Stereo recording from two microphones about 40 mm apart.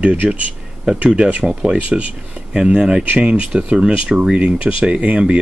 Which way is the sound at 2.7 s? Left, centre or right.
Right.